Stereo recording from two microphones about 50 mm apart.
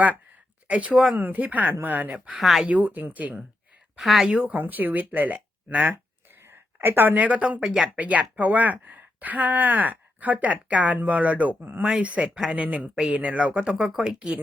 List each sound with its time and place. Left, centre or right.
0.7 s speech: right
2.4 s speech: centre
2.6 s speech: right
3.9 s speech: centre
4.4 s speech: right
6.4 s a woman's voice: right
7.6 s speech: centre
7.9 s speech: right
12.5 s speech: right